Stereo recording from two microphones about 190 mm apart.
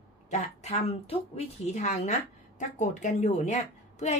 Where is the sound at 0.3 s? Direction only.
35° left (ahead or behind).